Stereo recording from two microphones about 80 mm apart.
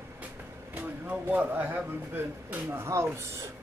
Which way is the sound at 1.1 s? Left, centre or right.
Right.